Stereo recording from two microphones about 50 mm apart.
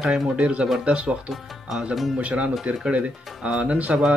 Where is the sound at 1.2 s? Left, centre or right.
Centre.